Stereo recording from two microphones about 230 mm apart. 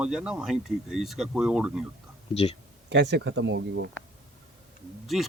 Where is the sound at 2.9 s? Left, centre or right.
Right.